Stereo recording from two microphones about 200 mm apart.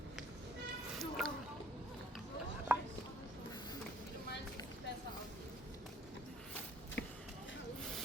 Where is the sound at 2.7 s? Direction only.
10° right (ahead or behind).